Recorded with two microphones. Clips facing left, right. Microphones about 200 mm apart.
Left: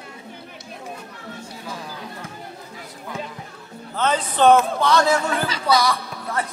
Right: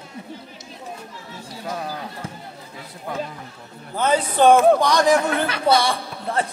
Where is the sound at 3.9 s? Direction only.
10° right (ahead or behind).